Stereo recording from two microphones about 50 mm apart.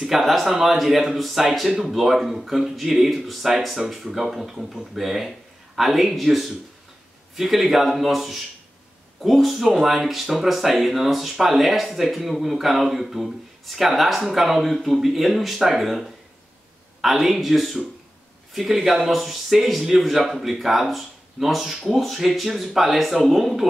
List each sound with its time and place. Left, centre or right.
0.0 s speech: centre